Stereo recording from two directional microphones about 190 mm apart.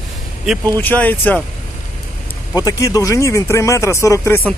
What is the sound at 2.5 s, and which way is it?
Speech, 15° left (ahead or behind).